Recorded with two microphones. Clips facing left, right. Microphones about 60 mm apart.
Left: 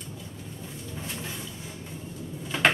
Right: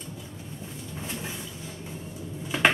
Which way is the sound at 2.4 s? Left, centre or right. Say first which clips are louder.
Right 1 dB; centre.